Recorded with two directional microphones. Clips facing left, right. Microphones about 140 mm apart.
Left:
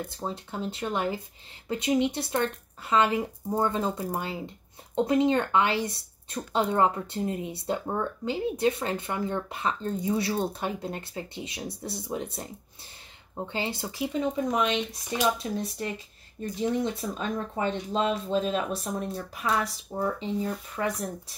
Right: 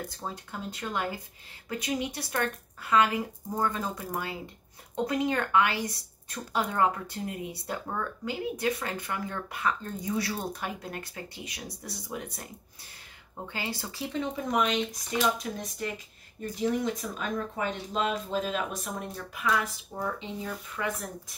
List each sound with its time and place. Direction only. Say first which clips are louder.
0.1 s speech: left 4 dB; 25° left (ahead or behind)
13.5 s speech: left 3 dB; 25° left (ahead or behind)
17.0 s speech: left 2 dB; 30° left (ahead or behind)